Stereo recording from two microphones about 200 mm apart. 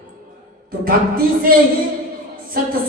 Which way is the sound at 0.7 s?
45° right (ahead or behind).